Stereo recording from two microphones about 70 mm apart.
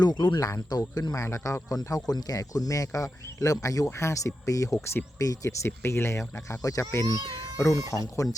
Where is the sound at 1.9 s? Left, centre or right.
Left.